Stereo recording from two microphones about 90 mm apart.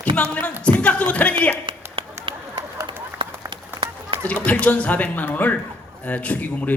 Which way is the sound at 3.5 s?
60° right (ahead or behind).